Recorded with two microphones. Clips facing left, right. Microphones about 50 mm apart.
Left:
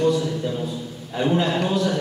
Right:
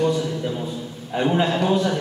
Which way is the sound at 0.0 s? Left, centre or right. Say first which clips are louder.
Left 1 dB; centre.